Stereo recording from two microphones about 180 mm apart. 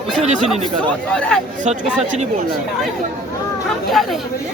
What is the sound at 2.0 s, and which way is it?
Speech, 40° right (ahead or behind).